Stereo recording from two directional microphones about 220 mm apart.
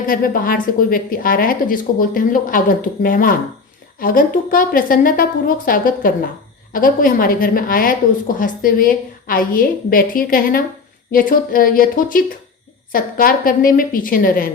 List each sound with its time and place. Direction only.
0.0 s a woman's voice: 40° left (ahead or behind)